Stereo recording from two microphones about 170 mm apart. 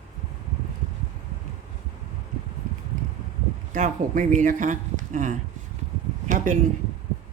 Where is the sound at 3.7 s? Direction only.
45° right (ahead or behind).